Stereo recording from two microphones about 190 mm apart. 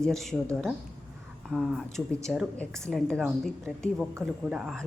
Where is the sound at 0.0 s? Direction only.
Centre (ahead or behind).